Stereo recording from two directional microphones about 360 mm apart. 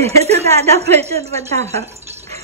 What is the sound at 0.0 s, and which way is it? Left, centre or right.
A woman's voice, centre.